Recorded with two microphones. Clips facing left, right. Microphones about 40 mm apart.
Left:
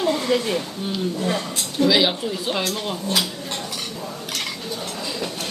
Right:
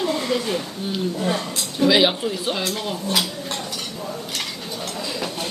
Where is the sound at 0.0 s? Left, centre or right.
Left.